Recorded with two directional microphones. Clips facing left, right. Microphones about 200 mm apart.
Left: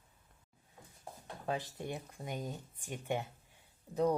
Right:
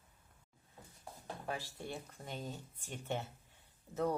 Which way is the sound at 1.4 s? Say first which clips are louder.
Left 5 dB; 20° left (ahead or behind).